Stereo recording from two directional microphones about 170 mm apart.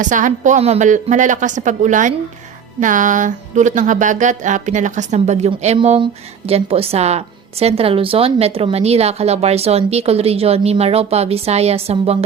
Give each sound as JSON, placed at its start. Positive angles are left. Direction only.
{"t": 0.0, "sound": "a woman's voice", "side_deg": -50}